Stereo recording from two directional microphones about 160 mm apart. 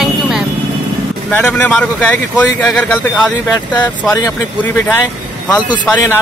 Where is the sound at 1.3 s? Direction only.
10° left (ahead or behind).